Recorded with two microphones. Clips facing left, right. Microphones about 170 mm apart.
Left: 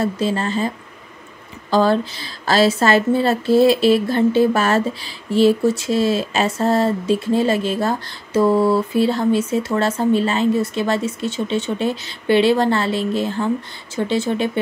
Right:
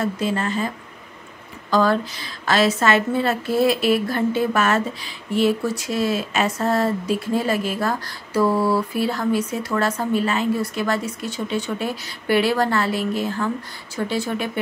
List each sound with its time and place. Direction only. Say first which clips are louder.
0.0 s a woman's voice: left 3 dB; 30° left (ahead or behind)
1.7 s a woman's voice: left 3 dB; 30° left (ahead or behind)